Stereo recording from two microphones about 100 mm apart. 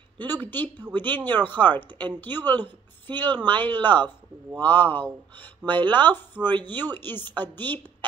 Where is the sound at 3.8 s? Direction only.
50° right (ahead or behind).